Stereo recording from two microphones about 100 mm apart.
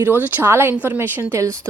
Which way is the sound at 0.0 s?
20° right (ahead or behind).